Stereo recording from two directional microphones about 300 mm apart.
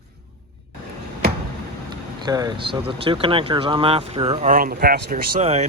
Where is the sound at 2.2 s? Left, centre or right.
Centre.